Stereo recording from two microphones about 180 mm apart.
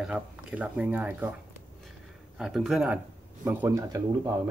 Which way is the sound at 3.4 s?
10° right (ahead or behind).